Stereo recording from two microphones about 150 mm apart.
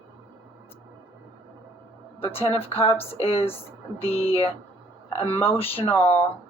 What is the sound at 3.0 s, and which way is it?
Speech, 40° left (ahead or behind).